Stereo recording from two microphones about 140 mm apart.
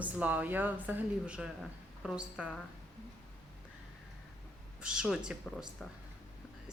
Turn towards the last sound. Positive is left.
turn(degrees=-5)  # may be behind; listen again after turning